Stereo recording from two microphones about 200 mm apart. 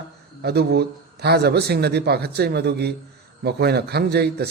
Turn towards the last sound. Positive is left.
turn(degrees=-55)  # may be behind; listen again after turning